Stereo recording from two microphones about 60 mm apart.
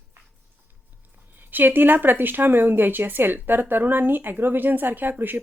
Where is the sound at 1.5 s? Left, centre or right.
Right.